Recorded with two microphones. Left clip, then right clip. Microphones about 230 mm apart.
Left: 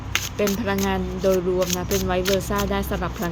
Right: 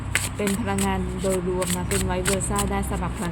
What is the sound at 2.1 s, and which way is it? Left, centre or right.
Speech, centre.